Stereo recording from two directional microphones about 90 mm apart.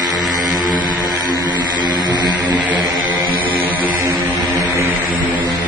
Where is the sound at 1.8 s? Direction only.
55° right (ahead or behind).